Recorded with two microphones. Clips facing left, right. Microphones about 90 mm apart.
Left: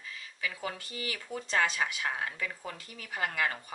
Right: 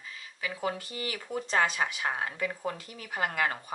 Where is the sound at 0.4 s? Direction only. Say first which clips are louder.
Right 4 dB; 25° right (ahead or behind).